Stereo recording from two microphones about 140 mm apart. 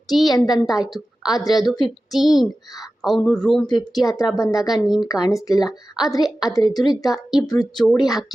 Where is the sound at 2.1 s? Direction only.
Centre (ahead or behind).